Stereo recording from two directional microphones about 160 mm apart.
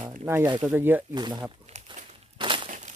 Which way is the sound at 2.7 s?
50° right (ahead or behind).